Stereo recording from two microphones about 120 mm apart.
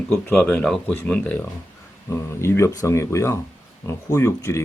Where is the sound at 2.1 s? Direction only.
20° left (ahead or behind).